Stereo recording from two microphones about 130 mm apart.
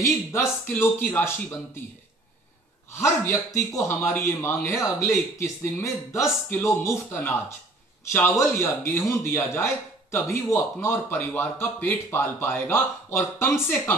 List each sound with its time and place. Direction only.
0.0 s speech: 20° left (ahead or behind)
2.9 s a man's voice: 20° left (ahead or behind)